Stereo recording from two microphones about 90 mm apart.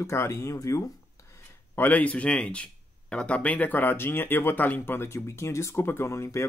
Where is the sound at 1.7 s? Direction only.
20° left (ahead or behind).